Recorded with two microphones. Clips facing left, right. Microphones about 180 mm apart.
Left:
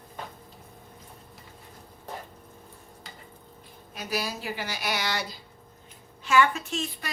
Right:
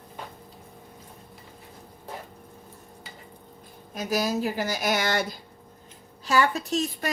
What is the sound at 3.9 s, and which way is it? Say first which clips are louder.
A woman's voice: right 6 dB; 45° right (ahead or behind).